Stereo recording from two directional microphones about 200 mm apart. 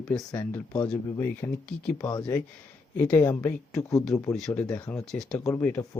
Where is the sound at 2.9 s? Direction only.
10° left (ahead or behind).